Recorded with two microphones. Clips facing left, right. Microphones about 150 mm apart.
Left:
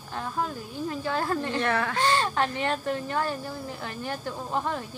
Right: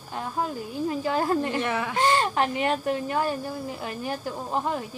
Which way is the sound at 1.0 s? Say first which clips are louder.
Right 3 dB; 15° right (ahead or behind).